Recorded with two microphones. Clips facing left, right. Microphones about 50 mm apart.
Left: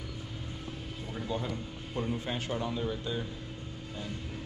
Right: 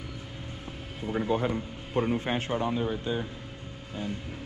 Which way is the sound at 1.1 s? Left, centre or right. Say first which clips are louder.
Right 8 dB; right.